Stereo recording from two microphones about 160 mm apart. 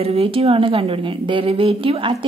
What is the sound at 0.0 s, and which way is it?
Speech, 40° right (ahead or behind).